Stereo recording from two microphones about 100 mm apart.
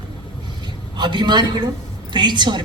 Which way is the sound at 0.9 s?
50° right (ahead or behind).